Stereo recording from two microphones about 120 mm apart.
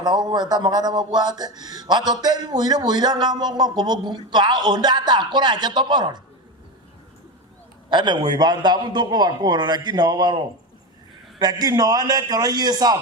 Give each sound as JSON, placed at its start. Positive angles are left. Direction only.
{"t": 0.0, "sound": "speech", "side_deg": -35}
{"t": 7.9, "sound": "speech", "side_deg": -40}